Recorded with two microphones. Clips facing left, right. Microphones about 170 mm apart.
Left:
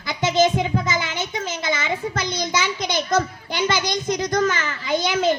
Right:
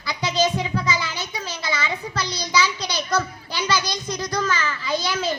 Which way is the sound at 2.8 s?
20° left (ahead or behind).